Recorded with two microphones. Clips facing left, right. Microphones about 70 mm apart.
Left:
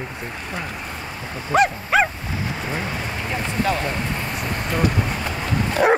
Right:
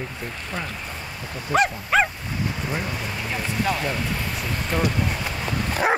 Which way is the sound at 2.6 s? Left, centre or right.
Left.